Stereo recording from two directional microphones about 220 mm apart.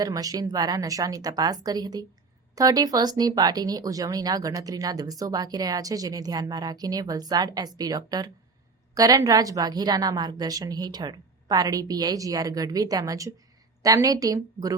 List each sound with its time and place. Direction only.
0.0 s speech: 15° right (ahead or behind)